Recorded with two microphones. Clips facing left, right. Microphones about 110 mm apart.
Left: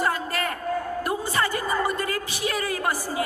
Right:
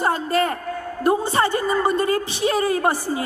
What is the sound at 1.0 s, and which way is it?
A woman's voice, 30° right (ahead or behind).